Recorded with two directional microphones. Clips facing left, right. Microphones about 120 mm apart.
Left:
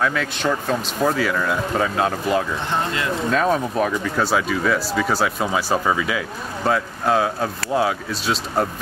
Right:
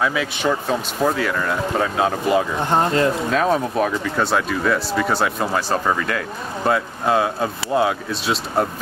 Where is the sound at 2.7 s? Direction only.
40° right (ahead or behind).